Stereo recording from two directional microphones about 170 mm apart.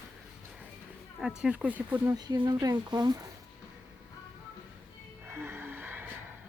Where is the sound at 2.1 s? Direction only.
25° right (ahead or behind).